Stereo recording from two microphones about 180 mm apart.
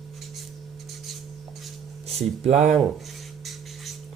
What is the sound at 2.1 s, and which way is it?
Speech, 35° right (ahead or behind).